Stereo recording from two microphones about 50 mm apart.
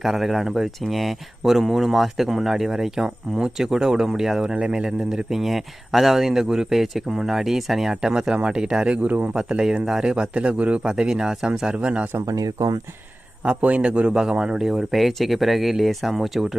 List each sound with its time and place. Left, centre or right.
0.0 s a man's voice: centre; by 9.3 s right
9.3 s a man's voice: centre
10.9 s a man's voice: centre
13.4 s a man's voice: right
14.6 s speech: centre